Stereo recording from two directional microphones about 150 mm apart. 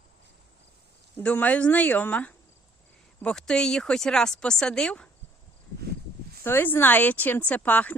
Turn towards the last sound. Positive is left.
turn(degrees=10)  # may be behind; listen again after turning